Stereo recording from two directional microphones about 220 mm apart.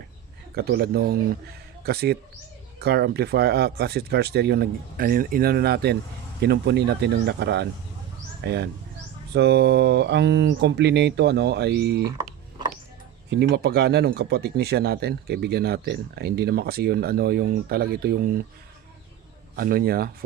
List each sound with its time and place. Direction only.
0.5 s speech: 45° right (ahead or behind)
13.3 s speech: 50° right (ahead or behind)
19.5 s speech: 45° right (ahead or behind)